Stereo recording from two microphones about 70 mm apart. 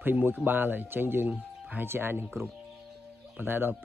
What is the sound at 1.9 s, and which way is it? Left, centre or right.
Speech, right.